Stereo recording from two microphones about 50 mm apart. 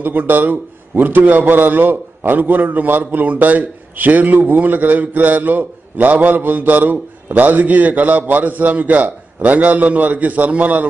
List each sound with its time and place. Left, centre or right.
0.0 s a man's voice: right